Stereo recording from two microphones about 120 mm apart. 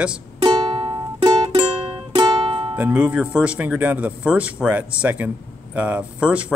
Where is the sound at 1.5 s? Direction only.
50° right (ahead or behind).